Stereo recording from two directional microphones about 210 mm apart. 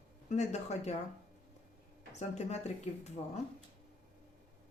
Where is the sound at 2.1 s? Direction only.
30° left (ahead or behind).